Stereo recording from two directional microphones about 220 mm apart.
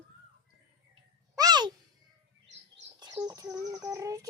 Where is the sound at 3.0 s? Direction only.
15° right (ahead or behind).